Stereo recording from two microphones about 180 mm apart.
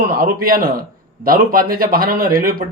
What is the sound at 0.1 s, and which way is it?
A man's voice, 50° right (ahead or behind).